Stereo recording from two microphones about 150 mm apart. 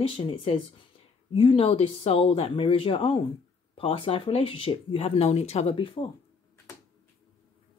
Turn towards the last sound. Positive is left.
turn(degrees=40)  # may be behind; listen again after turning